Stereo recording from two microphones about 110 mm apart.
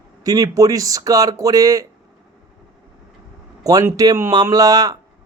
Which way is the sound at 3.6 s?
35° right (ahead or behind).